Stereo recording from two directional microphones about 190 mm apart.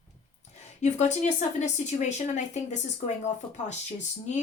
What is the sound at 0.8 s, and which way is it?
A woman's voice, 40° left (ahead or behind).